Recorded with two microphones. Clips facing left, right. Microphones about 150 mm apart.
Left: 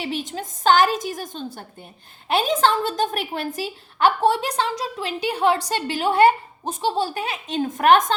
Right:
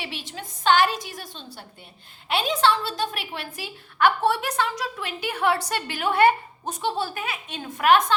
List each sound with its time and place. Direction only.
0.0 s a woman's voice: 45° left (ahead or behind)